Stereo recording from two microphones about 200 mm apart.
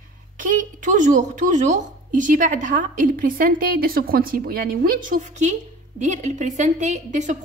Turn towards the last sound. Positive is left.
turn(degrees=-35)  # may be behind; listen again after turning